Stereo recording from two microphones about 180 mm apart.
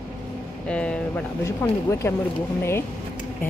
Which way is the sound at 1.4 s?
15° left (ahead or behind).